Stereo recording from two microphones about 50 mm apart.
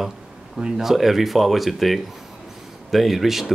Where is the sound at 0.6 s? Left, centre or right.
Centre.